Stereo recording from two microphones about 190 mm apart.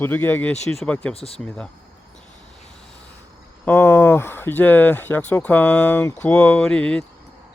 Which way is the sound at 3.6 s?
10° left (ahead or behind).